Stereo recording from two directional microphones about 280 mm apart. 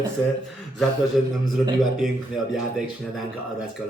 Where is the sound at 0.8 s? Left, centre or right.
Centre.